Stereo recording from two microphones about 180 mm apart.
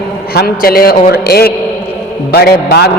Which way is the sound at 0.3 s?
55° left (ahead or behind).